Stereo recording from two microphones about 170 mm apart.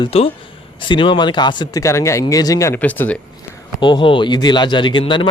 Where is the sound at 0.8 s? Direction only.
30° left (ahead or behind); by 3.2 s 10° left (ahead or behind).